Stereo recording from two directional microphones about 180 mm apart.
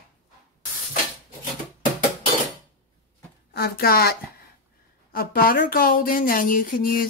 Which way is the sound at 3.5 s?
60° left (ahead or behind).